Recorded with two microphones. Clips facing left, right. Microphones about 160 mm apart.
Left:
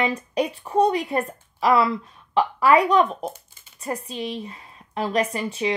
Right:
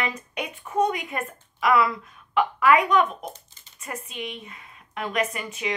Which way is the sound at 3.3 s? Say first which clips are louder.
Left 2 dB; 10° left (ahead or behind).